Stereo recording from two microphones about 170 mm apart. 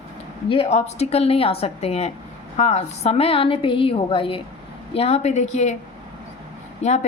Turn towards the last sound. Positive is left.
turn(degrees=40)  # may be behind; listen again after turning